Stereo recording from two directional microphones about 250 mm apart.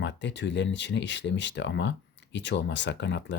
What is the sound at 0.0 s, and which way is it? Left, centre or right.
Speech, left.